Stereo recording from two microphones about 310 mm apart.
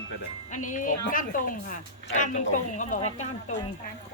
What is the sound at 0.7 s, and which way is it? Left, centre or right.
A woman's voice, left.